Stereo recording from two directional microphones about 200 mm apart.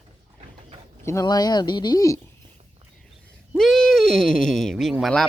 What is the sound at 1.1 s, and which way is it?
Speech, 15° left (ahead or behind).